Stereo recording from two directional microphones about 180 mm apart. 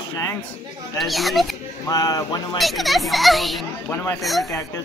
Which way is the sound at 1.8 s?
20° left (ahead or behind).